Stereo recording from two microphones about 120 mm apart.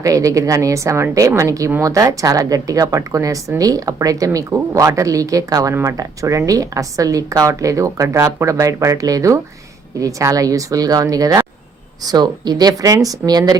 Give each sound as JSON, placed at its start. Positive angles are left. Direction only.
{"t": 0.0, "sound": "speech", "side_deg": -30}